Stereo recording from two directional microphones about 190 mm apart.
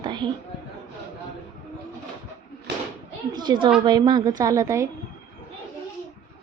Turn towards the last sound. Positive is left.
turn(degrees=-15)  # may be behind; listen again after turning